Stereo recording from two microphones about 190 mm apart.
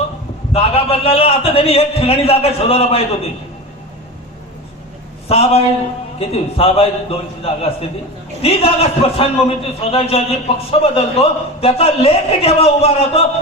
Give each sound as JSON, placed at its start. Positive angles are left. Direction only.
{"t": 0.5, "sound": "a man's voice", "side_deg": 30}
{"t": 5.3, "sound": "a man's voice", "side_deg": 30}